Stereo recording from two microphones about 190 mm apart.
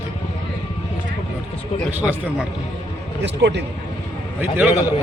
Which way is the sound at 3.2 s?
65° right (ahead or behind).